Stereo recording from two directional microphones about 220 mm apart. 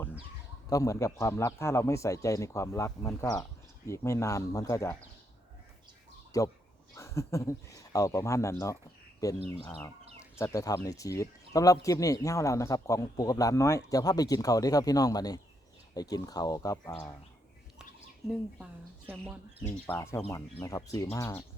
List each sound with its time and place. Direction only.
0.7 s speech: 15° left (ahead or behind)
6.3 s speech: 15° left (ahead or behind)
19.6 s speech: 10° left (ahead or behind)